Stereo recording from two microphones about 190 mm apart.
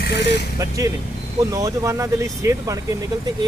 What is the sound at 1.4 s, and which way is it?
Speech, 15° right (ahead or behind).